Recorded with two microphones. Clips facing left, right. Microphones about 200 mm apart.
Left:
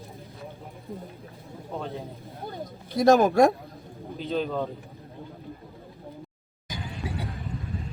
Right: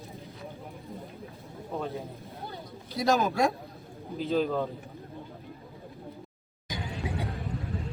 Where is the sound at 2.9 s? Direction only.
50° left (ahead or behind).